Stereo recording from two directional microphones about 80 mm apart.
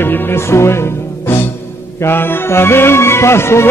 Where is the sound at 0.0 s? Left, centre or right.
Left.